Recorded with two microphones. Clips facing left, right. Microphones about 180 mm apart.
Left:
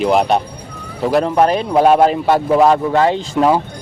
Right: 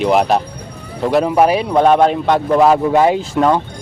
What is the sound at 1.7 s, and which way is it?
Speech, 5° left (ahead or behind).